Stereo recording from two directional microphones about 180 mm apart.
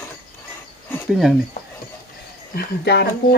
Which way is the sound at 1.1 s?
Centre (ahead or behind).